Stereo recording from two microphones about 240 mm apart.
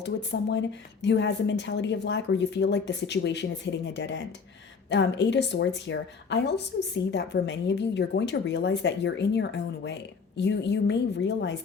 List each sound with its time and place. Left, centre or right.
0.0 s a woman's voice: left